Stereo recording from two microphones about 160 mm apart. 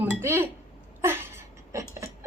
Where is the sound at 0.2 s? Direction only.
15° right (ahead or behind).